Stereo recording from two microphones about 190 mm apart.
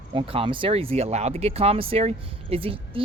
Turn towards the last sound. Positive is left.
turn(degrees=-30)  # may be behind; listen again after turning